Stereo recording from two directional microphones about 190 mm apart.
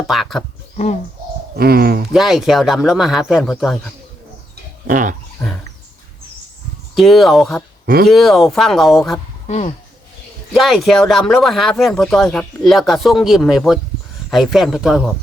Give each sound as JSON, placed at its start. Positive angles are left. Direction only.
{"t": 0.1, "sound": "speech", "side_deg": 0}
{"t": 1.5, "sound": "speech", "side_deg": -55}
{"t": 2.1, "sound": "speech", "side_deg": 0}
{"t": 4.9, "sound": "speech", "side_deg": -45}
{"t": 6.9, "sound": "speech", "side_deg": 0}
{"t": 9.5, "sound": "speech", "side_deg": 35}
{"t": 10.5, "sound": "speech", "side_deg": 0}